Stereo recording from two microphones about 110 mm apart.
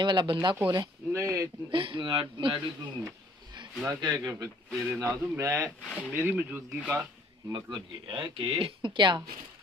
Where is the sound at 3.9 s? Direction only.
40° right (ahead or behind).